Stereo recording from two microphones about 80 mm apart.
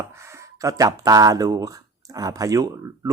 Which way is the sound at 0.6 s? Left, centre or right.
Right.